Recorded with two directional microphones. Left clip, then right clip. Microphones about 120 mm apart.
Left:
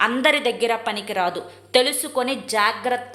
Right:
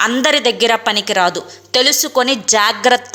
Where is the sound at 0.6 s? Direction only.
40° right (ahead or behind).